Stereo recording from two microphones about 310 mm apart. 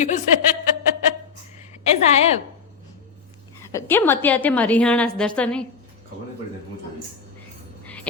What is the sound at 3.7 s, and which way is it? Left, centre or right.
A woman's voice, centre.